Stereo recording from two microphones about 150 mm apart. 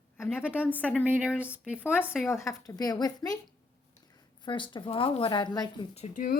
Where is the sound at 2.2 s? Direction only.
20° left (ahead or behind).